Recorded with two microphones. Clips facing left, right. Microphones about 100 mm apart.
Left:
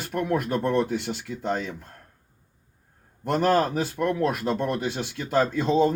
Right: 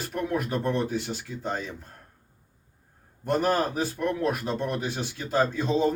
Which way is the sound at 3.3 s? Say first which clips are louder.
Left 3 dB; 55° left (ahead or behind).